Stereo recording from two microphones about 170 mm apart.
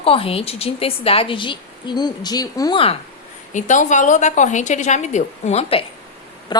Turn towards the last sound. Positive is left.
turn(degrees=35)  # may be behind; listen again after turning